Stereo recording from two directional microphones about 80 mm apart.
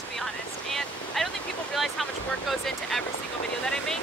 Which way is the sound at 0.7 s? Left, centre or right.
Centre.